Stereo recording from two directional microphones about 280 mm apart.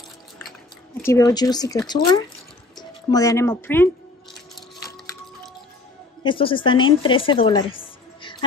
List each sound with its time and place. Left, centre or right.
1.0 s speech: centre
6.2 s a woman's voice: centre